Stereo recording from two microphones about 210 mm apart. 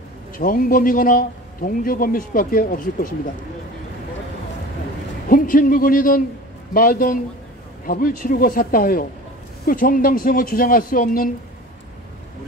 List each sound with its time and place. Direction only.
0.4 s speech: 40° left (ahead or behind)
5.3 s a man's voice: 40° left (ahead or behind)